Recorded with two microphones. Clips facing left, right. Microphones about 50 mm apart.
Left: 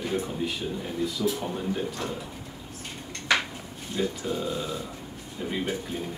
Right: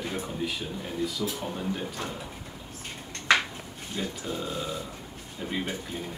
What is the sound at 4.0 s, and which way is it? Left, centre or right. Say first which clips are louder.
Speech: left 4 dB; centre.